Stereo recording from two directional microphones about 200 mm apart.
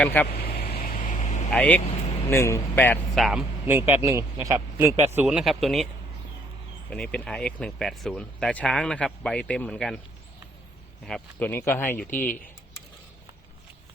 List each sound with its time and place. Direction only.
0.0 s speech: 10° left (ahead or behind)
0.4 s vehicle: 50° left (ahead or behind)
1.5 s speech: 5° left (ahead or behind)
3.2 s speech: centre (ahead or behind)
3.7 s speech: 10° right (ahead or behind)
6.9 s speech: 5° left (ahead or behind)
11.0 s speech: 5° left (ahead or behind)